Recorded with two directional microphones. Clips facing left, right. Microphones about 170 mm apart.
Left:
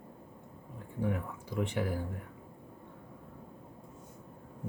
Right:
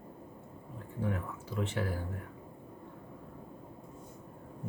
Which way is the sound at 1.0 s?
15° left (ahead or behind).